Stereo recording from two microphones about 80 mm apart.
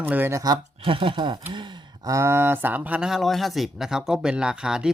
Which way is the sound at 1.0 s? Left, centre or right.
Right.